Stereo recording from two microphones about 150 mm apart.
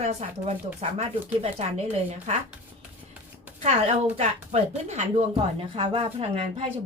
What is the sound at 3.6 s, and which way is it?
A woman's voice, 45° right (ahead or behind).